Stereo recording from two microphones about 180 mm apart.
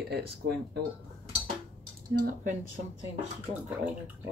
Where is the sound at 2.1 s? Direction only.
50° right (ahead or behind).